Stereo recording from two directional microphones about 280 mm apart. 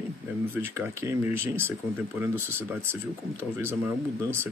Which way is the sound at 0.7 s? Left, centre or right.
Centre.